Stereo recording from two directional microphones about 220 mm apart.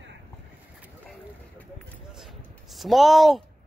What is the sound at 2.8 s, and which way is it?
Speech, centre (ahead or behind).